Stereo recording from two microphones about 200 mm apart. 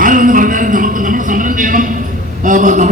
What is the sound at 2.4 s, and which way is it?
Speech, 40° right (ahead or behind).